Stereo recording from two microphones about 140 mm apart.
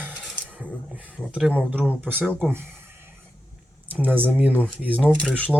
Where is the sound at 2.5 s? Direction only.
15° right (ahead or behind).